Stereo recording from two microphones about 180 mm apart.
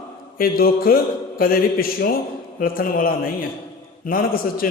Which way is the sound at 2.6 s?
55° left (ahead or behind).